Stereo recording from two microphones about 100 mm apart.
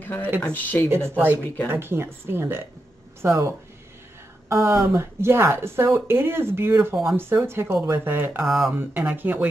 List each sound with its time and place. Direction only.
0.0 s speech: 20° left (ahead or behind)
1.1 s speech: 20° right (ahead or behind)
8.4 s speech: centre (ahead or behind)
8.7 s speech: 20° right (ahead or behind)